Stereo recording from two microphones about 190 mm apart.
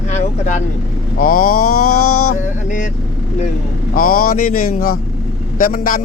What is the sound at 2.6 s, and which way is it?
Speech, 40° left (ahead or behind).